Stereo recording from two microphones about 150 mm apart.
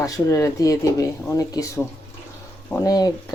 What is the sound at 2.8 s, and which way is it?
Speech, 25° left (ahead or behind).